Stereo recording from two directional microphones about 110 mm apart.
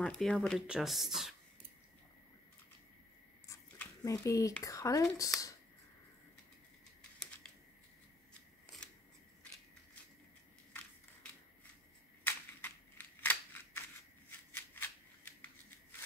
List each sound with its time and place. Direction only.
0.0 s speech: 5° left (ahead or behind)
4.0 s speech: 30° left (ahead or behind)
12.3 s scissors: 15° left (ahead or behind)